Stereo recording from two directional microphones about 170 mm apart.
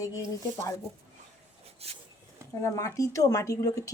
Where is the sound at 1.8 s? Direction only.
35° right (ahead or behind).